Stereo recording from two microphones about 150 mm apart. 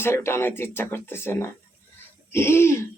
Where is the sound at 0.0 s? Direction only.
15° left (ahead or behind).